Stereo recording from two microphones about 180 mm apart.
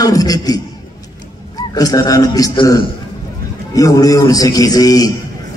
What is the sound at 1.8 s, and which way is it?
A man's voice, 20° left (ahead or behind).